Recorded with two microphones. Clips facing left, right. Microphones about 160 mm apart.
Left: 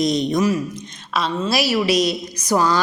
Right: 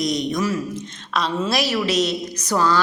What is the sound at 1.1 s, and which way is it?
A woman's voice, centre (ahead or behind).